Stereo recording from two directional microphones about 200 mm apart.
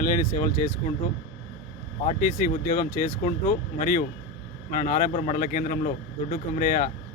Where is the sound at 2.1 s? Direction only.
45° left (ahead or behind).